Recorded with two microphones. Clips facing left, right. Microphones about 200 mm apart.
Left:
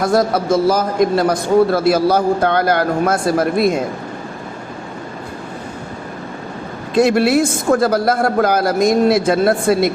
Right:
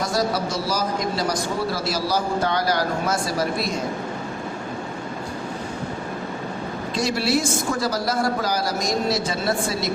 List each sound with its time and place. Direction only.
0.0 s a man's voice: 55° left (ahead or behind)
6.9 s a man's voice: 55° left (ahead or behind)